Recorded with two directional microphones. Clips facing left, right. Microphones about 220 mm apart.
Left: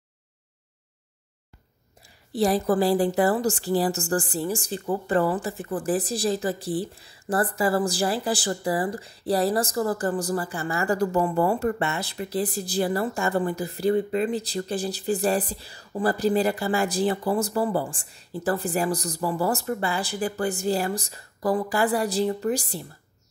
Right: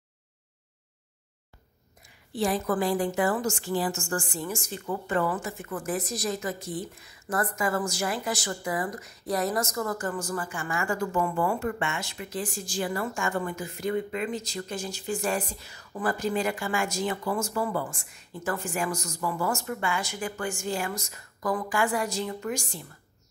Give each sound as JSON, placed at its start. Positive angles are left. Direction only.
{"t": 2.0, "sound": "a woman's voice", "side_deg": 35}